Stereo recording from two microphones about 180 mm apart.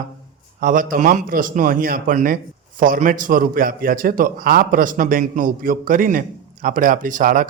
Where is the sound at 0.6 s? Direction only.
50° right (ahead or behind).